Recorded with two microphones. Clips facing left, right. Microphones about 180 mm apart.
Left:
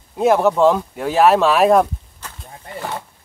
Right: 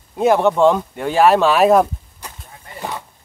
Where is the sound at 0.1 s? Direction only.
Centre (ahead or behind).